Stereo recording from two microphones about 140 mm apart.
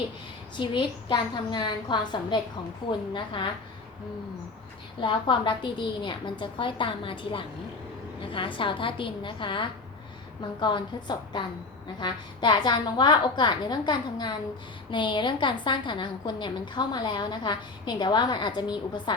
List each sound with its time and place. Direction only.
0.5 s a woman's voice: 35° left (ahead or behind)
4.9 s a woman's voice: 35° left (ahead or behind)